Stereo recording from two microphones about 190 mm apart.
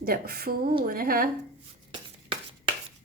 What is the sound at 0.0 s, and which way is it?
A woman's voice, 50° right (ahead or behind).